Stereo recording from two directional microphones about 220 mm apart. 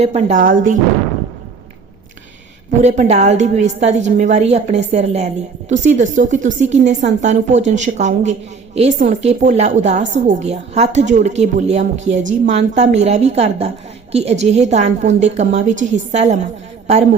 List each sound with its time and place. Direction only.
0.0 s a woman's voice: 30° right (ahead or behind)
2.8 s a woman's voice: 30° right (ahead or behind)